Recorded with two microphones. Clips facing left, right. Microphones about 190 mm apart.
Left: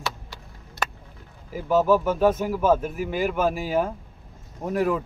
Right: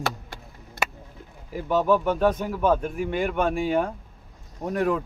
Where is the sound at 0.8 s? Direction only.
55° right (ahead or behind).